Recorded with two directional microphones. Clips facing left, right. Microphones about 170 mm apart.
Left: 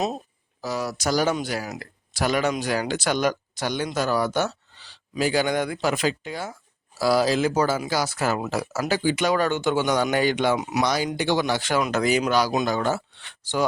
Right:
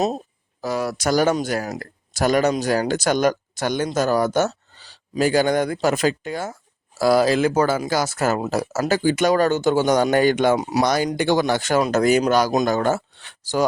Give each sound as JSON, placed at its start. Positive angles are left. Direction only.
{"t": 0.6, "sound": "speech", "side_deg": -55}
{"t": 10.8, "sound": "speech", "side_deg": -50}